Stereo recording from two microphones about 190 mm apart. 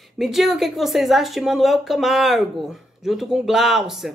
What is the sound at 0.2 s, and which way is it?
A woman's voice, centre (ahead or behind).